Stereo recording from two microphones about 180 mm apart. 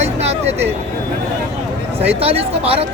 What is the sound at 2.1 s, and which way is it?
Speech, 35° right (ahead or behind).